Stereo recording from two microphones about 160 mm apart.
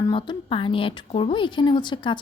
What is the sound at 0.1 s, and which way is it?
A woman's voice, 35° left (ahead or behind).